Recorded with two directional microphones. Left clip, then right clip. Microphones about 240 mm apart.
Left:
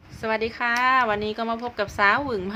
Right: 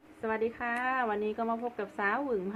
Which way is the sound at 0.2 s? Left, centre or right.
Left.